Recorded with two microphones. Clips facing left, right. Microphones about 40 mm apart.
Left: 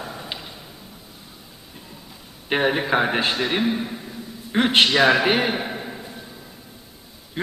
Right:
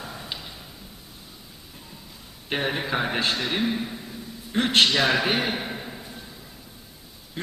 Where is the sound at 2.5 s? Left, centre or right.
Centre.